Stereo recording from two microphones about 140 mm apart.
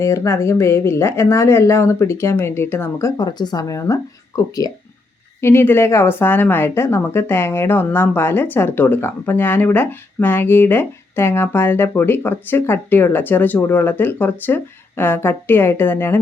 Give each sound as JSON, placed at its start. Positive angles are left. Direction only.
{"t": 0.0, "sound": "speech", "side_deg": 20}
{"t": 3.2, "sound": "a woman's voice", "side_deg": 30}